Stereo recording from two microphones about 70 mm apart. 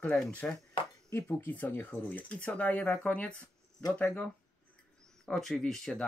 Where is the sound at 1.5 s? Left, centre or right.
Left.